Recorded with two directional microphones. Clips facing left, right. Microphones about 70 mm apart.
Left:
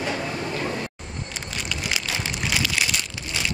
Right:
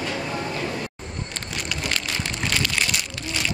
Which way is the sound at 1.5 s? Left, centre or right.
Centre.